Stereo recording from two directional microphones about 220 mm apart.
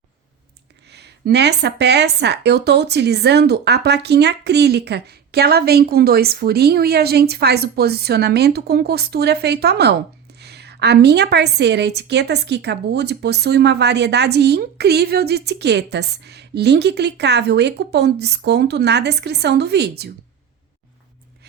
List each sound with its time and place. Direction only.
0.9 s a woman's voice: 50° right (ahead or behind)